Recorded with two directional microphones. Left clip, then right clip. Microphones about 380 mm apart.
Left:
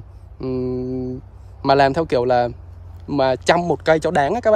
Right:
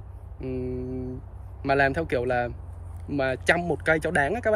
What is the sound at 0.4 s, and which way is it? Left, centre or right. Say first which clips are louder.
Speech: left 8 dB; left.